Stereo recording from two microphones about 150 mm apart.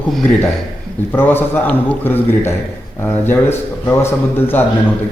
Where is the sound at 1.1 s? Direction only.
15° left (ahead or behind).